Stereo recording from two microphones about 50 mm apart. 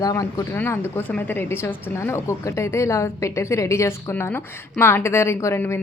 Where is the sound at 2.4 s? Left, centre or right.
Left.